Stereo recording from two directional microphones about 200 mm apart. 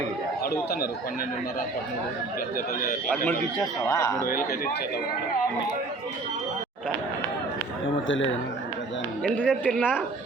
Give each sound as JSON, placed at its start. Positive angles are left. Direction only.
{"t": 0.4, "sound": "speech", "side_deg": 50}
{"t": 3.8, "sound": "speech", "side_deg": 20}
{"t": 4.3, "sound": "a man's voice", "side_deg": 45}
{"t": 9.2, "sound": "speech", "side_deg": 5}